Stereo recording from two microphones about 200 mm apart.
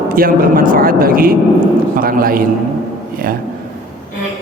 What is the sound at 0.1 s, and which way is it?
Speech, 45° right (ahead or behind).